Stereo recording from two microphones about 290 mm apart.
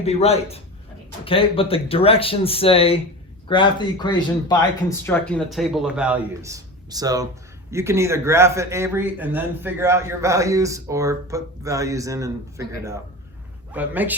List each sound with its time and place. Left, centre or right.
0.0 s a man's voice: left; by 14.2 s centre